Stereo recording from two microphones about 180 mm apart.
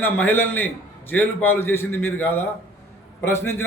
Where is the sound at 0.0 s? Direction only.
10° left (ahead or behind).